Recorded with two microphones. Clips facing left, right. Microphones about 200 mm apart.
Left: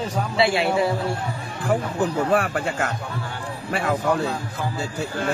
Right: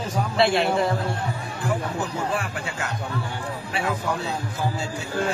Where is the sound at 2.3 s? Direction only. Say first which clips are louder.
Left 7 dB; 55° left (ahead or behind).